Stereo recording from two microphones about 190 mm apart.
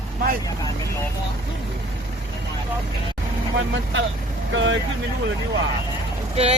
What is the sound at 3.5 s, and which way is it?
Speech, 80° right.